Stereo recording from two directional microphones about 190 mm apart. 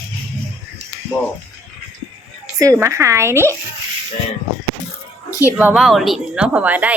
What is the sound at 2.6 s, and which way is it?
Speech, 15° right (ahead or behind).